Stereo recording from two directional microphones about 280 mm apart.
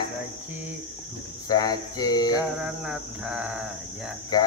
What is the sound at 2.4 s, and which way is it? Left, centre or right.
Speech, centre.